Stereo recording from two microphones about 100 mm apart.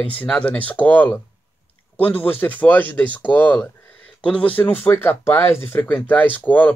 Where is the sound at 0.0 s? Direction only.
15° left (ahead or behind).